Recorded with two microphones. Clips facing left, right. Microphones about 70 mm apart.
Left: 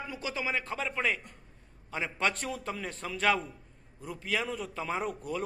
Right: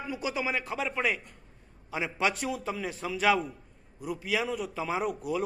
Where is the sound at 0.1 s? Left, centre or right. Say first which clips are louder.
Right 3 dB; centre.